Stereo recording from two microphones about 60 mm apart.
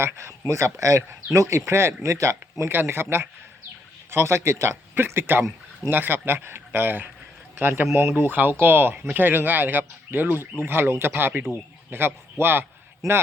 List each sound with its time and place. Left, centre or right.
0.0 s speech: right
2.6 s a man's voice: right